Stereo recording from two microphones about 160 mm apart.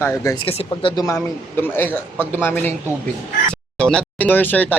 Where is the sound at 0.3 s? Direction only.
35° left (ahead or behind).